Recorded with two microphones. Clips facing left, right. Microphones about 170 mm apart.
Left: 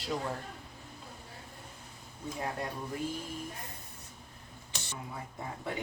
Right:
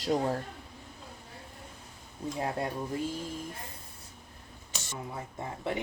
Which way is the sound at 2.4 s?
25° right (ahead or behind).